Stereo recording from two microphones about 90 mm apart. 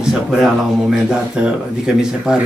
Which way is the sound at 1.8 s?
5° right (ahead or behind).